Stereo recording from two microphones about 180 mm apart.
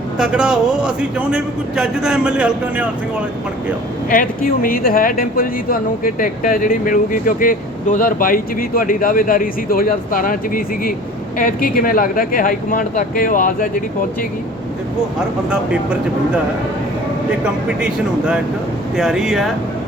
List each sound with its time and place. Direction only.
0.2 s a man's voice: 5° right (ahead or behind)
4.1 s speech: 50° left (ahead or behind)
15.4 s a man's voice: 5° right (ahead or behind)
17.4 s a man's voice: 5° right (ahead or behind)